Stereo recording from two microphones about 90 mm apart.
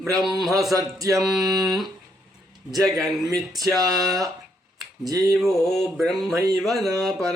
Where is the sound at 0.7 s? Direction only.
40° right (ahead or behind).